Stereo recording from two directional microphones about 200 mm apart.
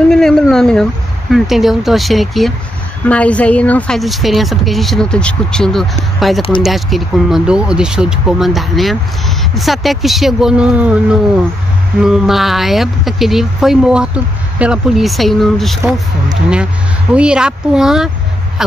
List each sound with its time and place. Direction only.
0.1 s speech: centre (ahead or behind)
17.1 s speech: 5° right (ahead or behind)